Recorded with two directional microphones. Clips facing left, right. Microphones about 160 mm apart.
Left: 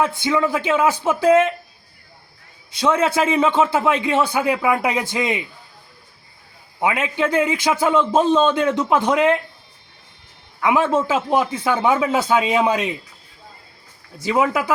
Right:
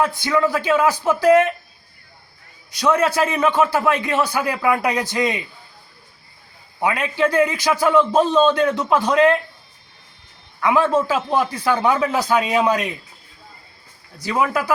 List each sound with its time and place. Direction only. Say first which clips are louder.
0.0 s a man's voice: even; 20° left (ahead or behind)
2.7 s a man's voice: even; 25° left (ahead or behind)
6.8 s a man's voice: right 1 dB; 20° left (ahead or behind)
10.6 s a man's voice: even; 20° left (ahead or behind)
14.2 s a man's voice: left 2 dB; 20° left (ahead or behind)